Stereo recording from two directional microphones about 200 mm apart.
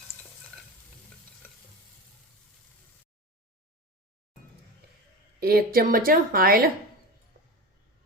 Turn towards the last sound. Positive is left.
turn(degrees=-50)  # may be behind; listen again after turning